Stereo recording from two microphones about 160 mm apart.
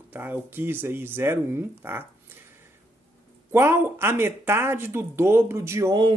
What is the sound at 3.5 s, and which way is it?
Speech, 15° right (ahead or behind).